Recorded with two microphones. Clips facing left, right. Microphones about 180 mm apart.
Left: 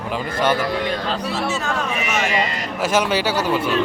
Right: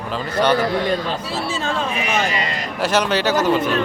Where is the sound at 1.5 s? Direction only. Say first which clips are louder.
Even; 25° right (ahead or behind).